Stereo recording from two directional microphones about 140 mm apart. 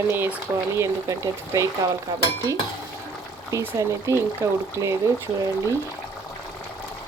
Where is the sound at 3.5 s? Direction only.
20° right (ahead or behind).